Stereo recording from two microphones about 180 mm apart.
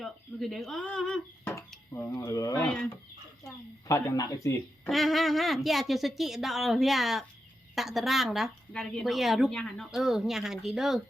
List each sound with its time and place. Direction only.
0.0 s a woman's voice: centre (ahead or behind)
1.9 s speech: 15° left (ahead or behind)
3.8 s speech: 20° left (ahead or behind)
4.9 s a woman's voice: centre (ahead or behind)